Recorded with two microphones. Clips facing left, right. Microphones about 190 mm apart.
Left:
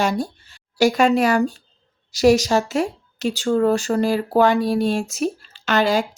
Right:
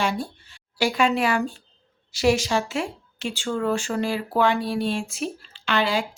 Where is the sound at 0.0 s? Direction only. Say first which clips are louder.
Left 4 dB; 40° left (ahead or behind).